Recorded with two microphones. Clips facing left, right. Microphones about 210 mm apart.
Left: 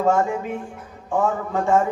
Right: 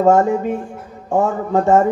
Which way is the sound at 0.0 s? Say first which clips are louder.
Right 6 dB; 45° right (ahead or behind).